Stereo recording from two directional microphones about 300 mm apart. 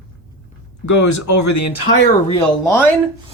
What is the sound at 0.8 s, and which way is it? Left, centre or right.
Speech, left.